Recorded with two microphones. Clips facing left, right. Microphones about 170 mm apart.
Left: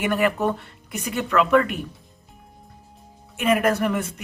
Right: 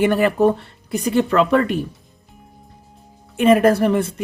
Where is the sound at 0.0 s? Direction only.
30° right (ahead or behind).